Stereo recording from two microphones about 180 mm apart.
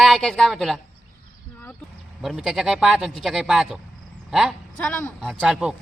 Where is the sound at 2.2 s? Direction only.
Centre (ahead or behind).